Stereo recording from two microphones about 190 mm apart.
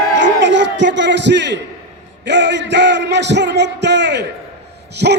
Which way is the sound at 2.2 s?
65° right (ahead or behind).